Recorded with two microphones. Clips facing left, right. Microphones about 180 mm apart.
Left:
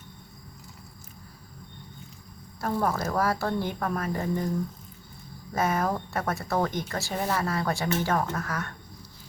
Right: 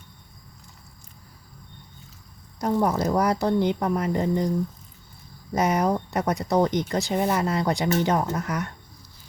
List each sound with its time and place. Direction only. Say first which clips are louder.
2.6 s speech: right 5 dB; 20° right (ahead or behind)
5.5 s speech: right 4 dB; 20° right (ahead or behind)